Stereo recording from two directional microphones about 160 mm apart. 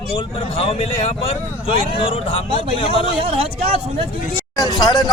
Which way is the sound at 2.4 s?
35° right (ahead or behind).